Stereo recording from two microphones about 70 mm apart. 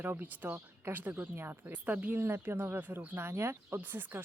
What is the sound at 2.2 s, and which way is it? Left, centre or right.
Speech, right.